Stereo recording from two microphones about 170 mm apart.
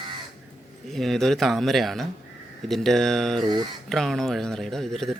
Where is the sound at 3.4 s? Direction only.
25° right (ahead or behind).